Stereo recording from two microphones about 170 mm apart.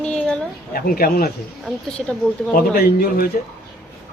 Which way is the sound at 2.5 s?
65° left (ahead or behind).